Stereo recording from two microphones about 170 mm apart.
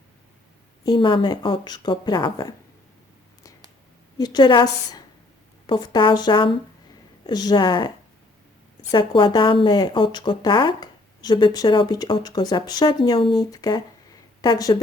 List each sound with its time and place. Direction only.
0.9 s speech: 30° left (ahead or behind)
4.2 s speech: 25° left (ahead or behind)